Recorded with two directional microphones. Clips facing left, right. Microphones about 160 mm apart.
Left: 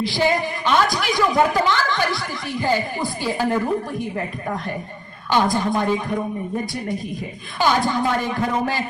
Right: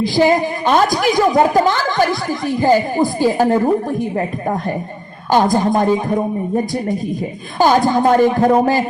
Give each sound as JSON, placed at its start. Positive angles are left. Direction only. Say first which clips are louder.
{"t": 0.0, "sound": "a woman's voice", "louder": "right 7 dB", "side_deg": -45}
{"t": 7.6, "sound": "a woman's voice", "louder": "right 7 dB", "side_deg": -45}